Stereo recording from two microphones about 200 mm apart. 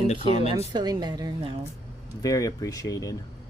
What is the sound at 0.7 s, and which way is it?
Speech, 20° right (ahead or behind).